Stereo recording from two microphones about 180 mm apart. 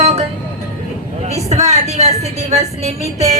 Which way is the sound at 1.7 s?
40° right (ahead or behind).